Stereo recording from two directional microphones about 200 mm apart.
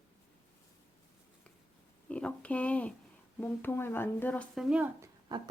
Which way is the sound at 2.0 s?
5° left (ahead or behind).